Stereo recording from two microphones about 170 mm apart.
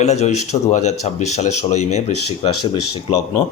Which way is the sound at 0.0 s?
40° left (ahead or behind).